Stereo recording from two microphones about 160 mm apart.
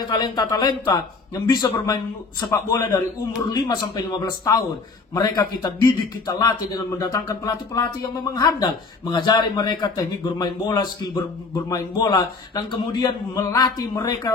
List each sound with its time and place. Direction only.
0.0 s a man's voice: 25° left (ahead or behind)